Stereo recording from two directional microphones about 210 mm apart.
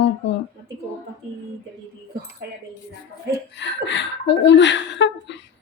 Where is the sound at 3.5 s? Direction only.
60° left (ahead or behind).